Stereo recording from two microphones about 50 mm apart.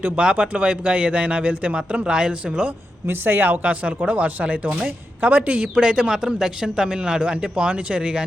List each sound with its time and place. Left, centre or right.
0.2 s a man's voice: right
3.1 s a man's voice: right